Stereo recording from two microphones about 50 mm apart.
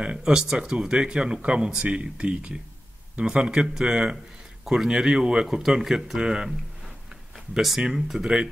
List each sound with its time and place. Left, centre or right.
0.0 s speech: centre
7.5 s speech: centre